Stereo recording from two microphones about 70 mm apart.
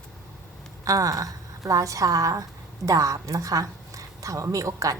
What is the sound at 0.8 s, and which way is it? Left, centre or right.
A woman's voice, right.